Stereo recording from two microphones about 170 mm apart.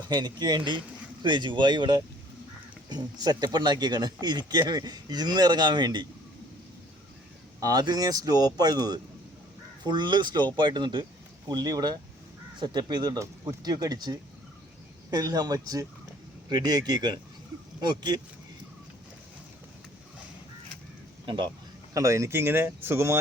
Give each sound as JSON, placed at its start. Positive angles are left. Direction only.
{"t": 0.1, "sound": "speech", "side_deg": -25}
{"t": 7.6, "sound": "speech", "side_deg": -20}
{"t": 21.2, "sound": "speech", "side_deg": -30}